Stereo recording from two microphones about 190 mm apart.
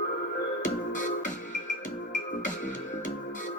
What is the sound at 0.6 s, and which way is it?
Music, 40° left (ahead or behind).